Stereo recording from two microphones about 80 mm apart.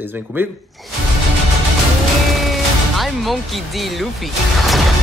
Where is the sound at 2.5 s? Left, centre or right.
Centre.